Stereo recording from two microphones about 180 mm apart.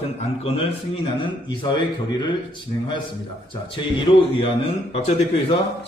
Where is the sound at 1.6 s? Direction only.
25° left (ahead or behind).